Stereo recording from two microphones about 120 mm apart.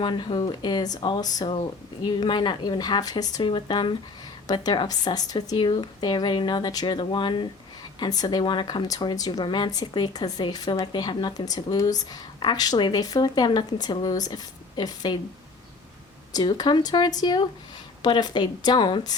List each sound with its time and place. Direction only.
0.0 s speech: 40° left (ahead or behind)
16.3 s speech: 35° left (ahead or behind)